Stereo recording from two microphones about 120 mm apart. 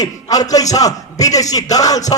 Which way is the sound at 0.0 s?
30° left (ahead or behind).